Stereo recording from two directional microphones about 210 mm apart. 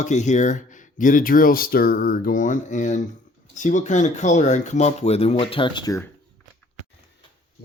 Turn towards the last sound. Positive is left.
turn(degrees=20)  # may be behind; listen again after turning